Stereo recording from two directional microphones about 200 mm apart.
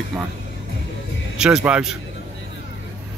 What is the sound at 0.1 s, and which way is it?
Speech, 5° right (ahead or behind).